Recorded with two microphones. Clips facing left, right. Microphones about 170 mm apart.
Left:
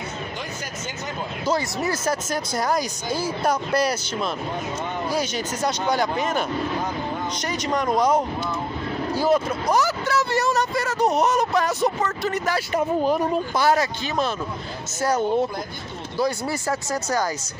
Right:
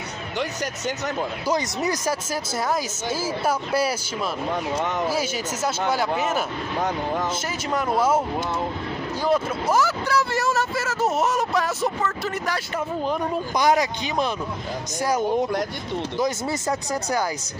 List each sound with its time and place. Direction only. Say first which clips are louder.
1.5 s speech: left 1 dB; 15° right (ahead or behind)
2.5 s speech: left 1 dB; 5° right (ahead or behind)
4.8 s speech: right 3 dB; 80° right
5.1 s speech: left 1 dB; 5° right (ahead or behind)
7.4 s speech: left 2 dB; 5° right (ahead or behind)
9.1 s speech: left 2 dB; 5° left (ahead or behind)
13.6 s speech: right 2 dB; 15° right (ahead or behind)